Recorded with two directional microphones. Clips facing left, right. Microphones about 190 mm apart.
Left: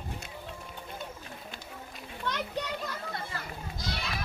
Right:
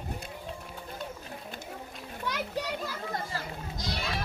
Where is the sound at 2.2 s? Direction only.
10° right (ahead or behind).